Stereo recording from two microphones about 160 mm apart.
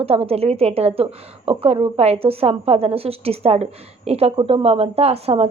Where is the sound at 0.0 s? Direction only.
40° right (ahead or behind).